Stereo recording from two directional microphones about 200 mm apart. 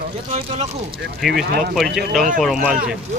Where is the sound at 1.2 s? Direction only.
Centre (ahead or behind).